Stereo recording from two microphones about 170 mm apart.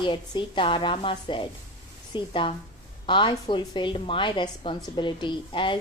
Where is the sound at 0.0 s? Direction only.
30° left (ahead or behind).